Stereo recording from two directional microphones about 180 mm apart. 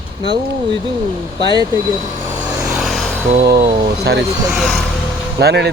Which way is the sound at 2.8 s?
Centre (ahead or behind).